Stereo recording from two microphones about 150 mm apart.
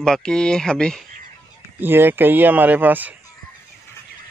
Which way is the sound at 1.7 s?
15° right (ahead or behind).